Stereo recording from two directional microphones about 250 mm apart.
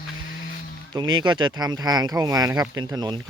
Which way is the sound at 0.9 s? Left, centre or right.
Centre.